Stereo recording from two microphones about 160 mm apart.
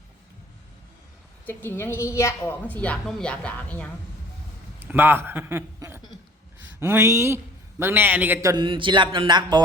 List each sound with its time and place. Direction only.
1.5 s a woman's voice: 15° left (ahead or behind)
4.8 s a man's voice: 10° right (ahead or behind)
8.6 s speech: 30° right (ahead or behind)